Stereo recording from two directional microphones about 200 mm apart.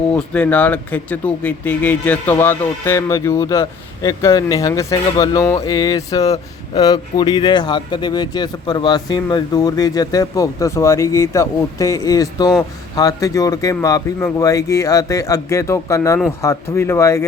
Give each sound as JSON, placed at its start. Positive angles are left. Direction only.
{"t": 0.1, "sound": "speech", "side_deg": 5}